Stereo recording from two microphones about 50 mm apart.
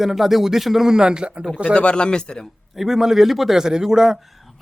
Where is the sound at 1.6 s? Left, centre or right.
Left.